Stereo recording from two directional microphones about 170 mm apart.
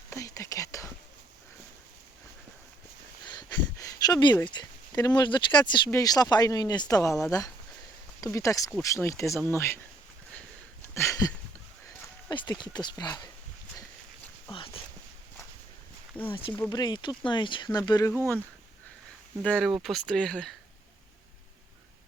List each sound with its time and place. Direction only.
0.1 s whispering: 20° left (ahead or behind)
3.2 s speech: 20° left (ahead or behind)
10.8 s a sound: 15° left (ahead or behind)
12.3 s speech: 25° left (ahead or behind)
14.5 s a sound: 30° left (ahead or behind)
16.3 s speech: 30° left (ahead or behind)
19.4 s speech: 5° left (ahead or behind)